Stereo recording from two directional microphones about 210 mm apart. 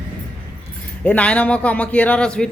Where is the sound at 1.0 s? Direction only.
5° left (ahead or behind).